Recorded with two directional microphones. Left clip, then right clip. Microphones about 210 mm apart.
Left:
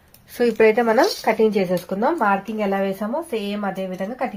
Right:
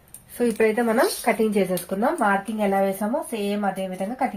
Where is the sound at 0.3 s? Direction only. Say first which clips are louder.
Left 5 dB; 55° left (ahead or behind); by 3.7 s 35° left (ahead or behind).